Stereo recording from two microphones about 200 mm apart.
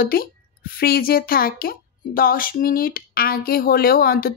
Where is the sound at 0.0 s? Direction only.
45° left (ahead or behind).